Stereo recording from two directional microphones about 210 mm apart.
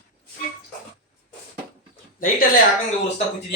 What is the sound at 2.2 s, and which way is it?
Speech, 40° left (ahead or behind).